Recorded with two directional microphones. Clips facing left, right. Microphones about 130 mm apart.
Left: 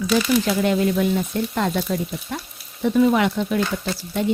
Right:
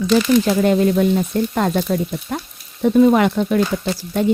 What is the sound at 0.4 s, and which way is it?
A woman's voice, 45° right (ahead or behind).